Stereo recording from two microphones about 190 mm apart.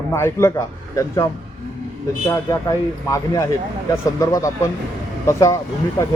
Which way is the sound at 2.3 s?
15° left (ahead or behind).